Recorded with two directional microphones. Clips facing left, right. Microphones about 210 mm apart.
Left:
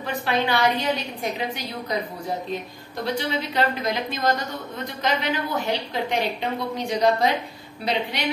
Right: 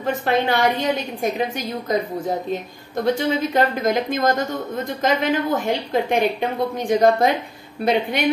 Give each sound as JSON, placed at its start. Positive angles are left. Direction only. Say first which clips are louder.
{"t": 0.0, "sound": "speech", "louder": "right 4 dB", "side_deg": -50}
{"t": 3.2, "sound": "speech", "louder": "right 5 dB", "side_deg": -45}